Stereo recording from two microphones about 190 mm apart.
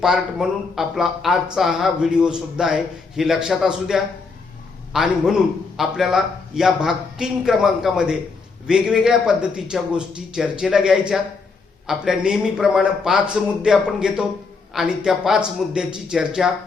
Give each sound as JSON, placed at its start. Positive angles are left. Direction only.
{"t": 0.0, "sound": "speech", "side_deg": 0}